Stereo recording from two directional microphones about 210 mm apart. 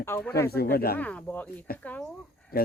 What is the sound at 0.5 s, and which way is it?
Speech, 45° left (ahead or behind).